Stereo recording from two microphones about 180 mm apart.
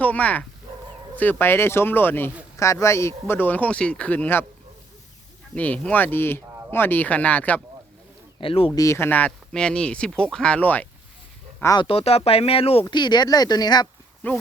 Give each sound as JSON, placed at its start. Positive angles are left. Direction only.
{"t": 0.0, "sound": "speech", "side_deg": 10}
{"t": 5.5, "sound": "speech", "side_deg": 5}
{"t": 8.4, "sound": "speech", "side_deg": 30}
{"t": 8.8, "sound": "speech", "side_deg": 15}
{"t": 11.6, "sound": "speech", "side_deg": 20}
{"t": 11.9, "sound": "speech", "side_deg": 35}
{"t": 14.2, "sound": "speech", "side_deg": 10}